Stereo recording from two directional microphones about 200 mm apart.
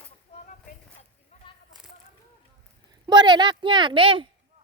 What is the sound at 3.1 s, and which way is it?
A woman's voice, 20° right (ahead or behind).